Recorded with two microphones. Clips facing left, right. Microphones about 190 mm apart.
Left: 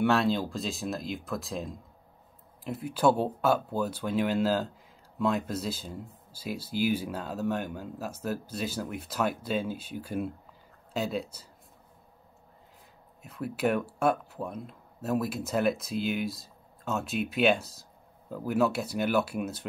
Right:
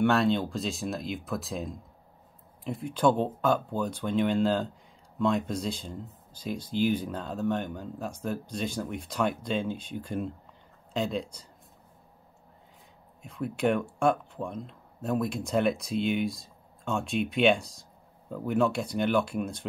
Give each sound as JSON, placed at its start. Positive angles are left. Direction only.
{"t": 0.0, "sound": "speech", "side_deg": 0}
{"t": 13.2, "sound": "speech", "side_deg": 5}